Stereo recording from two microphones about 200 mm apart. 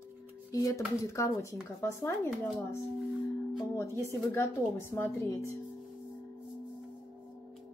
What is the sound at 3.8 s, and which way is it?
Speech, 15° left (ahead or behind).